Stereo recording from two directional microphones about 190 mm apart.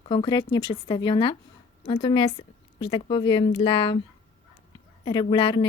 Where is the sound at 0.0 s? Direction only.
25° left (ahead or behind).